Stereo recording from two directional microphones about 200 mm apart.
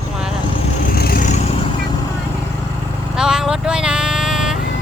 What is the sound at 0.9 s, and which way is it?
Vehicle, 50° left (ahead or behind).